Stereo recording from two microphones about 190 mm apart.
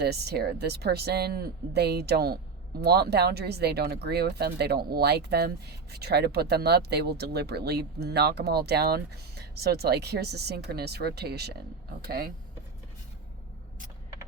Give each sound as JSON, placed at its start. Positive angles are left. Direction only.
{"t": 0.0, "sound": "speech", "side_deg": -60}